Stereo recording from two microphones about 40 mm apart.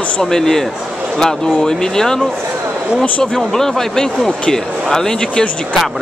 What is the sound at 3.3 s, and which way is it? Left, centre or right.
Speech, centre.